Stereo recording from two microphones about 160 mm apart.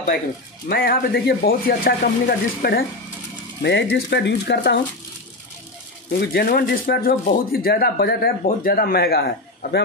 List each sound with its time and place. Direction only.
0.7 s speech: 70° left (ahead or behind)
3.6 s speech: 90° left
6.1 s speech: 70° left (ahead or behind)